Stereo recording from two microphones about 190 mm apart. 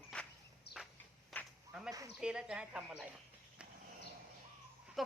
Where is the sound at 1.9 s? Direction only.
20° right (ahead or behind).